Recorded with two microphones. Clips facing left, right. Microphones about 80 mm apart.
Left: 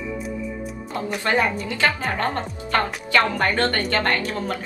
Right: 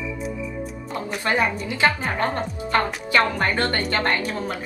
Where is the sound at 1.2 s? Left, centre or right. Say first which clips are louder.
Left 1 dB; right.